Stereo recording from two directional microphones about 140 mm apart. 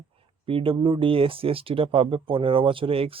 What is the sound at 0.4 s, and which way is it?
Speech, 40° right (ahead or behind).